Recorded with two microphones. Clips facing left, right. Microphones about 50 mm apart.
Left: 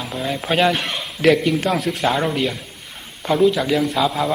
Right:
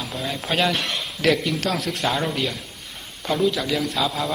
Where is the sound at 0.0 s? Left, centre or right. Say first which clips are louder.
Left 4 dB; centre.